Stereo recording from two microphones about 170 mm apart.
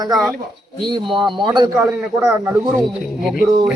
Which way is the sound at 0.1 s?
5° right (ahead or behind).